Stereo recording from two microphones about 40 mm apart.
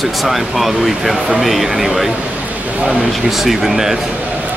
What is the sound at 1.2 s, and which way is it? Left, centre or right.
Speech, right.